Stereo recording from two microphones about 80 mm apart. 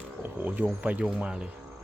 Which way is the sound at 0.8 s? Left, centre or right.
Centre.